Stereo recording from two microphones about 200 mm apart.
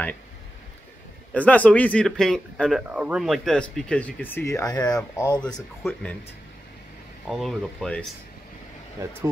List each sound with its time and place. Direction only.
1.3 s speech: 5° left (ahead or behind)
5.4 s speech: centre (ahead or behind)
7.2 s speech: centre (ahead or behind)